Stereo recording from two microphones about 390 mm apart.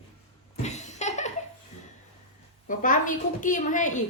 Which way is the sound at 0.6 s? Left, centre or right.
Centre.